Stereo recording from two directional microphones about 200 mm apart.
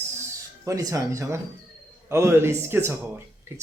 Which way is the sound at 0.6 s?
15° right (ahead or behind).